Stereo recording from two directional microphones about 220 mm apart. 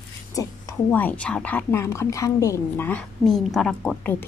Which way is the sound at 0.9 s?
10° left (ahead or behind).